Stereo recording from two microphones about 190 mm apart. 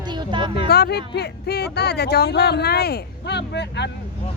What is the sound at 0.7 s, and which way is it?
Speech, 60° left (ahead or behind).